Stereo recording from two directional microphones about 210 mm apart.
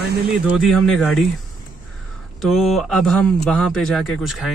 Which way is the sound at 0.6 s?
Centre (ahead or behind).